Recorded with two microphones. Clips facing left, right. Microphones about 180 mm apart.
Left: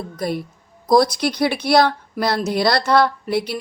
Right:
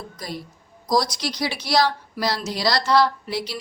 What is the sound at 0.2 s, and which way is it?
Speech, 60° left (ahead or behind).